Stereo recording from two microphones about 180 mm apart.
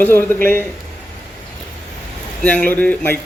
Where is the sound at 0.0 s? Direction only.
10° left (ahead or behind).